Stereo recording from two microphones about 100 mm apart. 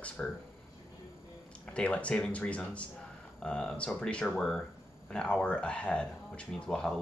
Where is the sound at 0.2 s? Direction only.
5° left (ahead or behind).